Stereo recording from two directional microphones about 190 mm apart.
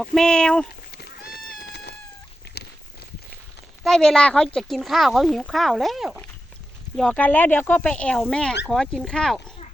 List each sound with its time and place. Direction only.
0.0 s speech: centre (ahead or behind)
0.9 s cat: 55° left (ahead or behind)
3.8 s speech: 5° left (ahead or behind)